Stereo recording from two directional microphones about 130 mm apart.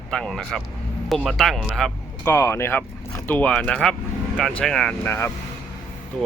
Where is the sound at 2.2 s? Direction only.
20° left (ahead or behind).